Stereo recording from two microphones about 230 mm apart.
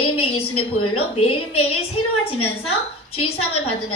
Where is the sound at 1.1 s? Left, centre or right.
Left.